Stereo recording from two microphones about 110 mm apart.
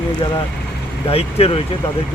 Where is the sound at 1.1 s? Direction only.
60° left (ahead or behind).